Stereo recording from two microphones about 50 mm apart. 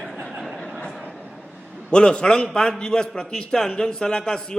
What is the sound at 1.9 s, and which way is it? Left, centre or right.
A man's voice, centre.